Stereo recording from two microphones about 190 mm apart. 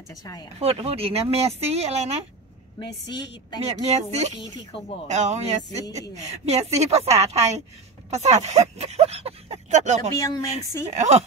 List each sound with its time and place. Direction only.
0.2 s a woman's voice: 20° left (ahead or behind)
0.6 s a woman's voice: 30° right (ahead or behind)
2.8 s a woman's voice: 20° left (ahead or behind)
3.6 s a woman's voice: 35° right (ahead or behind)
4.4 s a woman's voice: 30° left (ahead or behind)
5.0 s a woman's voice: 40° right (ahead or behind)
10.1 s speech: 20° left (ahead or behind)
10.9 s a woman's voice: 35° right (ahead or behind)